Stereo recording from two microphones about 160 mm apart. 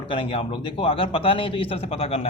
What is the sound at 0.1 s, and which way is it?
A man's voice, 30° left (ahead or behind).